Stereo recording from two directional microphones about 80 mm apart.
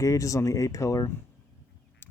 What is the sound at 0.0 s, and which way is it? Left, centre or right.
Speech, left.